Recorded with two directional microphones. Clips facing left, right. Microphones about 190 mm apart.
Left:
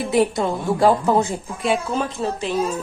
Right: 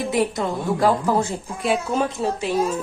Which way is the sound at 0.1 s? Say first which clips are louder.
Left 5 dB; 30° left (ahead or behind).